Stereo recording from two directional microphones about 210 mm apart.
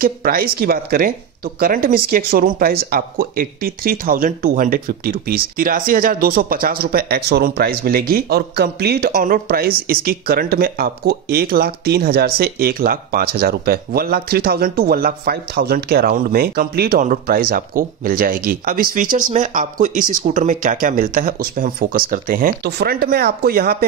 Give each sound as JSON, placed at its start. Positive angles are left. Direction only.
{"t": 0.0, "sound": "speech", "side_deg": -45}